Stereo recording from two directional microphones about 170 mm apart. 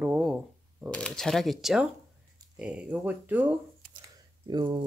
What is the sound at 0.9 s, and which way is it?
Speech, 5° left (ahead or behind).